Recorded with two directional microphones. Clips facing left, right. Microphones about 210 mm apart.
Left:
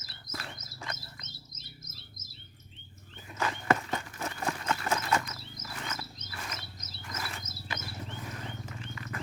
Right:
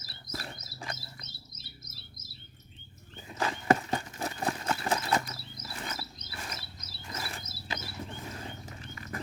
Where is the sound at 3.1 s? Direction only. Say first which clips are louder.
Right 1 dB; 30° right (ahead or behind).